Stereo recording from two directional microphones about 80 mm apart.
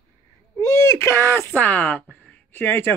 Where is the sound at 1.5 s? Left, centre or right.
Centre.